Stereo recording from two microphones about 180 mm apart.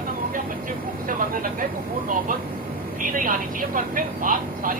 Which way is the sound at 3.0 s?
50° right (ahead or behind).